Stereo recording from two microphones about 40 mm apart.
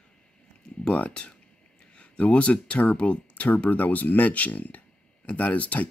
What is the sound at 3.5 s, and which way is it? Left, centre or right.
Speech, left.